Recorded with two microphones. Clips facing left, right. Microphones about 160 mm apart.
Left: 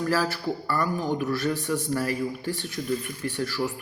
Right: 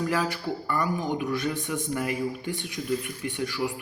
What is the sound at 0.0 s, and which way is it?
A man's voice, 15° right (ahead or behind).